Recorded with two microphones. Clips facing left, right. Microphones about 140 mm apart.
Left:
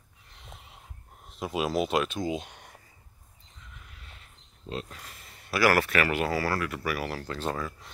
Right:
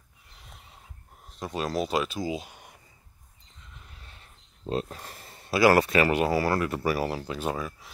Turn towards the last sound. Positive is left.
turn(degrees=-15)  # may be behind; listen again after turning